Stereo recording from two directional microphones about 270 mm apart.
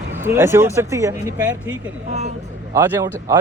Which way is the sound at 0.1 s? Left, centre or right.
Centre.